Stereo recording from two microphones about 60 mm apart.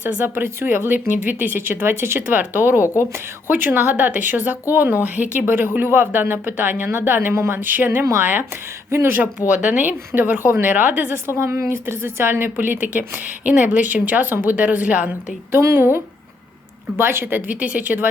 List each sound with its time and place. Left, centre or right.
0.3 s a woman's voice: right
2.3 s speech: right
2.8 s a woman's voice: left
3.5 s a woman's voice: right
9.5 s a woman's voice: right
11.3 s speech: right
15.5 s a woman's voice: right
17.0 s speech: right